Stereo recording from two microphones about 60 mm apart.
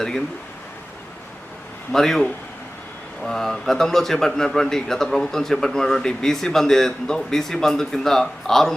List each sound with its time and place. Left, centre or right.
1.9 s a man's voice: centre